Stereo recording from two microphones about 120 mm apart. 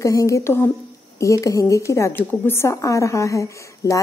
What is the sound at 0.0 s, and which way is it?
A woman's voice, 25° left (ahead or behind).